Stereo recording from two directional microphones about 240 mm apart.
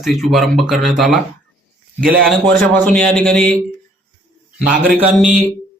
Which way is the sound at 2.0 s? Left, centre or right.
Right.